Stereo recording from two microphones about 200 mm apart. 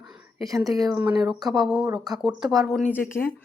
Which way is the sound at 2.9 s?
10° left (ahead or behind).